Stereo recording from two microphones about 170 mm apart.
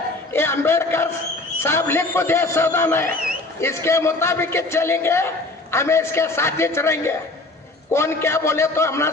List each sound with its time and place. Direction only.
0.3 s a man's voice: 15° left (ahead or behind)